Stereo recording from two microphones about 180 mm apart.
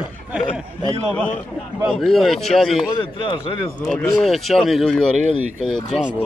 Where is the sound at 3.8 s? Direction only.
5° left (ahead or behind).